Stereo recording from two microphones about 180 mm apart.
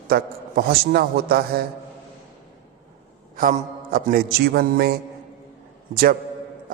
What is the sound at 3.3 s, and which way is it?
A man's voice, 50° right (ahead or behind).